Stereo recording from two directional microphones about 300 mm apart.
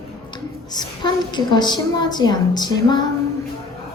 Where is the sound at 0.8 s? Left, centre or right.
Centre.